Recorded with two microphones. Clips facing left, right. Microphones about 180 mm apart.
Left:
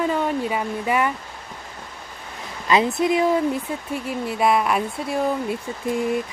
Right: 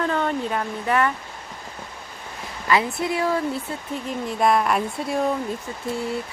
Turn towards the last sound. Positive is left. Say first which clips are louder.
# left 4 dB
turn(degrees=15)  # may be behind; listen again after turning